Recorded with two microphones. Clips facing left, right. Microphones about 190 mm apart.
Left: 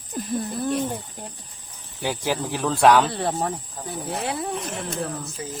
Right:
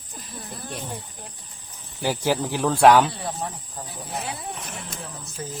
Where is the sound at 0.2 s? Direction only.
55° left (ahead or behind).